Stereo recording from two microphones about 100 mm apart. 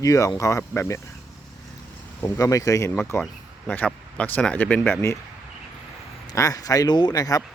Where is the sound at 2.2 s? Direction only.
35° left (ahead or behind).